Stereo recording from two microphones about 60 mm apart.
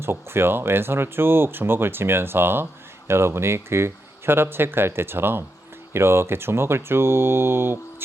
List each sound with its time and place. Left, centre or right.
0.0 s speech: right